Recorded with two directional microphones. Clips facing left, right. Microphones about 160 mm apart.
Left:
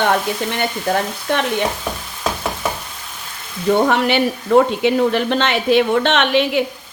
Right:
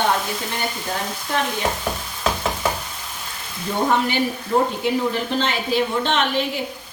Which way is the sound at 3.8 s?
75° left (ahead or behind).